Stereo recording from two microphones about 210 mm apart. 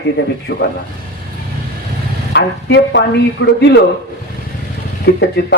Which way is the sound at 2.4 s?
55° left (ahead or behind).